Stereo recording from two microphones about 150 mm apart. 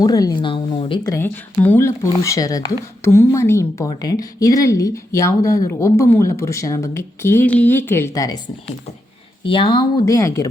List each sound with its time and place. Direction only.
0.0 s speech: 25° left (ahead or behind)
1.1 s speech: 15° left (ahead or behind)
9.5 s speech: 35° left (ahead or behind)
10.1 s speech: 20° left (ahead or behind)